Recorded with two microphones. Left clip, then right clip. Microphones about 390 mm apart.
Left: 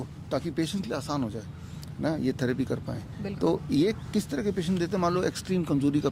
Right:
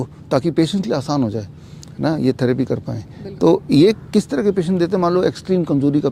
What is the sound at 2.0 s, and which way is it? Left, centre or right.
Speech, right.